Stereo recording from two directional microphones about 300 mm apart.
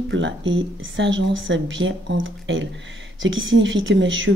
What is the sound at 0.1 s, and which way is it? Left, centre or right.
Speech, right.